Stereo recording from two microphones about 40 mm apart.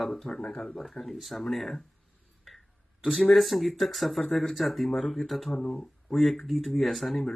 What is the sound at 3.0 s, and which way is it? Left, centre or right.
Speech, centre.